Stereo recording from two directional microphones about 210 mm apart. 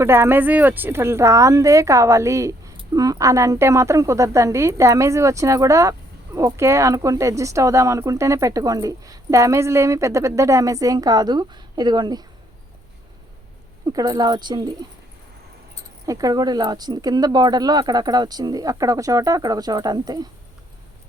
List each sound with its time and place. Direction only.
0.0 s speech: 10° right (ahead or behind)
13.8 s speech: 20° right (ahead or behind)
16.0 s speech: 15° right (ahead or behind)